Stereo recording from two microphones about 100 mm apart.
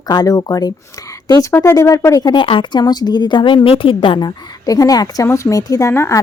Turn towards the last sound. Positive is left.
turn(degrees=25)  # may be behind; listen again after turning